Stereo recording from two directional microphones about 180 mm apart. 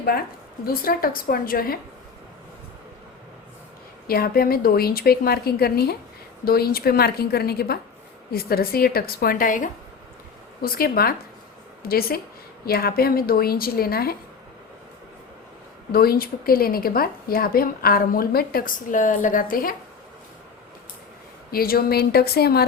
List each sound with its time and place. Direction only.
0.0 s a woman's voice: 55° left (ahead or behind)
4.0 s a woman's voice: 55° left (ahead or behind)
15.9 s a woman's voice: 55° left (ahead or behind)
21.5 s a woman's voice: 55° left (ahead or behind)